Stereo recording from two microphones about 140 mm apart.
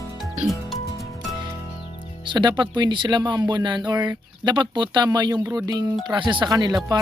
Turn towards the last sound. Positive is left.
turn(degrees=-30)  # may be behind; listen again after turning